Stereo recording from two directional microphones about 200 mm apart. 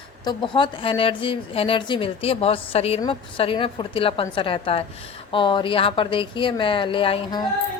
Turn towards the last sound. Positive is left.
turn(degrees=25)  # may be behind; listen again after turning